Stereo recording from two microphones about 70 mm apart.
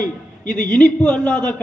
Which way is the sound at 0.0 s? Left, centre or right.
Centre.